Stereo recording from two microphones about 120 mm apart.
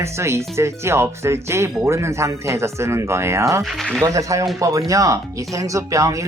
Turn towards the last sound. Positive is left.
turn(degrees=-25)  # may be behind; listen again after turning